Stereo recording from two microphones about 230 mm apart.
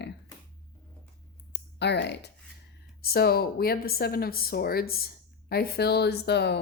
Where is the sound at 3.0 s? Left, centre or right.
Left.